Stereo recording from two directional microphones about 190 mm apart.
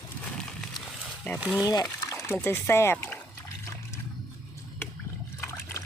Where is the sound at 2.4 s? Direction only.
15° left (ahead or behind).